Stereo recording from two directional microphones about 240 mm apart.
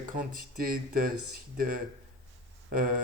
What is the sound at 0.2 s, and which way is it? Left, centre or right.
Speech, right.